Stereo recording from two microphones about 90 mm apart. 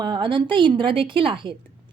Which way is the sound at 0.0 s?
60° right (ahead or behind).